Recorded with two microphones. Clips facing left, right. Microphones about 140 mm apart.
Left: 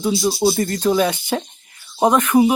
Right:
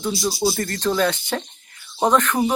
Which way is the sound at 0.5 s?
10° left (ahead or behind).